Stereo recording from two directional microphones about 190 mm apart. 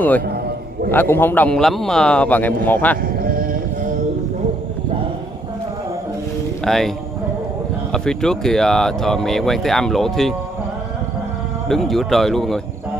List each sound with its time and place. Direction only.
0.9 s a man's voice: 10° left (ahead or behind)
3.0 s a sound: 50° right (ahead or behind)
6.6 s speech: centre (ahead or behind)
7.9 s speech: 5° left (ahead or behind)
11.7 s speech: centre (ahead or behind)